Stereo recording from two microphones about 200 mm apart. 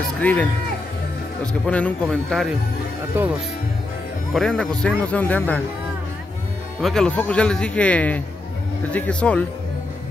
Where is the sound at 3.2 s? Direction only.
10° right (ahead or behind).